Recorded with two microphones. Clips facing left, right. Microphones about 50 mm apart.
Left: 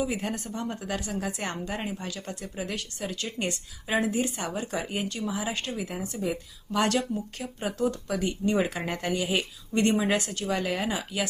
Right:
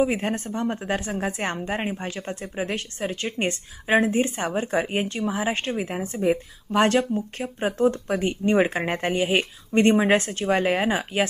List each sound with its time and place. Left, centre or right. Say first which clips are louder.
0.0 s speech: right 7 dB; right